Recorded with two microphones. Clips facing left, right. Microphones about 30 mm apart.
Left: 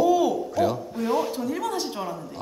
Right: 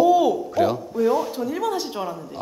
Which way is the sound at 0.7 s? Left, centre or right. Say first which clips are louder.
Right 4 dB; centre.